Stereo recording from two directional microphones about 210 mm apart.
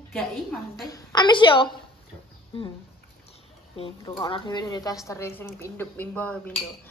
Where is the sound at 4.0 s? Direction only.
20° left (ahead or behind).